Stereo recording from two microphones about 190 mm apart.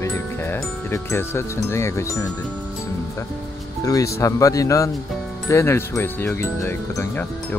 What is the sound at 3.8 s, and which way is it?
Speech, 15° left (ahead or behind).